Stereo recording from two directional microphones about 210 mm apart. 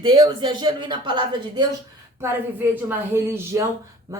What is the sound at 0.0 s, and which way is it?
Speech, 20° right (ahead or behind).